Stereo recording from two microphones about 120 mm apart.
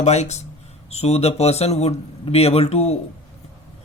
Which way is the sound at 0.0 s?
70° left (ahead or behind).